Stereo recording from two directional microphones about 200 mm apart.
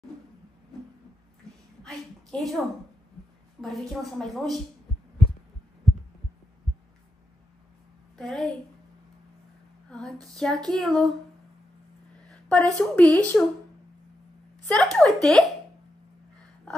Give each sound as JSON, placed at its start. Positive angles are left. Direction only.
{"t": 1.8, "sound": "a sound", "side_deg": 5}
{"t": 3.6, "sound": "speech", "side_deg": 0}
{"t": 8.2, "sound": "speech", "side_deg": 0}
{"t": 9.8, "sound": "female singing", "side_deg": 5}
{"t": 10.2, "sound": "speech", "side_deg": 5}
{"t": 12.3, "sound": "a sound", "side_deg": 5}
{"t": 12.7, "sound": "a woman's voice", "side_deg": 5}
{"t": 14.7, "sound": "speech", "side_deg": 5}